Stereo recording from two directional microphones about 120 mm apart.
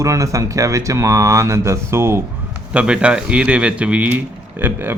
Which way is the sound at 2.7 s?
10° right (ahead or behind).